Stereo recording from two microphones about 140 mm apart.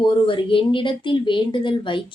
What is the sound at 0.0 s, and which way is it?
Speech, 35° left (ahead or behind).